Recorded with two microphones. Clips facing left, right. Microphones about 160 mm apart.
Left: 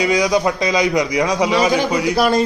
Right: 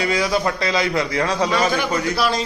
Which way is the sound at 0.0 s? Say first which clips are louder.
Left 4 dB; 15° left (ahead or behind).